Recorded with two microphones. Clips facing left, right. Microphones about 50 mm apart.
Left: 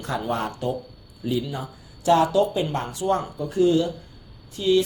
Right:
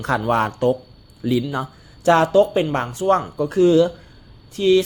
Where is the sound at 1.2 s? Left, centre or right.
Right.